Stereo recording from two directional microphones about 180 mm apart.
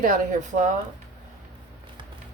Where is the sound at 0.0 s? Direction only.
45° right (ahead or behind).